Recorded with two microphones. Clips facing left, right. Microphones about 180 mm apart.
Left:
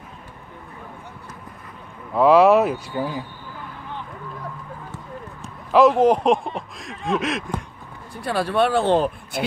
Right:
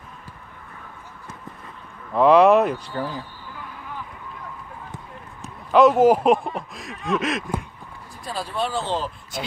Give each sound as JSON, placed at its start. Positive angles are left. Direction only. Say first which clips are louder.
{"t": 2.1, "sound": "speech", "louder": "even", "side_deg": 0}
{"t": 2.9, "sound": "speech", "louder": "left 2 dB", "side_deg": 15}
{"t": 5.4, "sound": "speech", "louder": "even", "side_deg": 0}
{"t": 8.1, "sound": "speech", "louder": "left 8 dB", "side_deg": 65}